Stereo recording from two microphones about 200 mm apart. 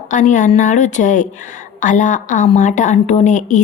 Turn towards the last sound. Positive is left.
turn(degrees=40)  # may be behind; listen again after turning